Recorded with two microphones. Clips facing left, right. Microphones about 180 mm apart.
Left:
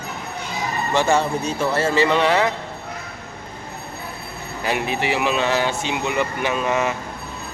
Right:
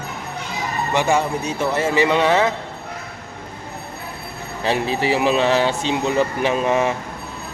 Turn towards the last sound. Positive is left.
turn(degrees=-30)  # may be behind; listen again after turning